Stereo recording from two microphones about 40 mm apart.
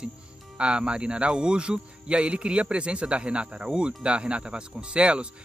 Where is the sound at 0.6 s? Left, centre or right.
Right.